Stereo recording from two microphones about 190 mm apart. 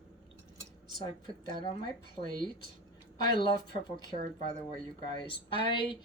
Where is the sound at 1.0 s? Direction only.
20° left (ahead or behind).